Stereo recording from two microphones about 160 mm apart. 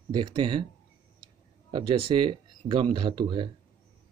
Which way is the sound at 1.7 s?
35° right (ahead or behind).